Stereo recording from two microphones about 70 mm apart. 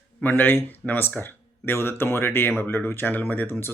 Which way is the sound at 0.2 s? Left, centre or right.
Left.